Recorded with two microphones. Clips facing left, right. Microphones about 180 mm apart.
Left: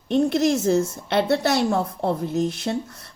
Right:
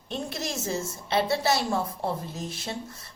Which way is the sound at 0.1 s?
60° left (ahead or behind).